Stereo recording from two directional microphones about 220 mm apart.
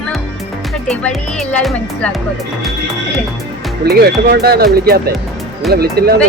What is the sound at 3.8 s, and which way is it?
Speech, 45° right (ahead or behind).